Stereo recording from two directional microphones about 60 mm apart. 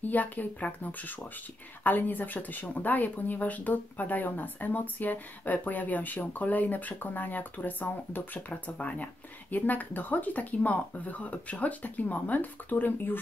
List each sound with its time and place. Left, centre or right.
0.0 s speech: left